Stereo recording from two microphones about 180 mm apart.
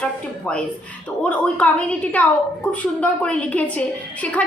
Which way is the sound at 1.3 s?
5° left (ahead or behind).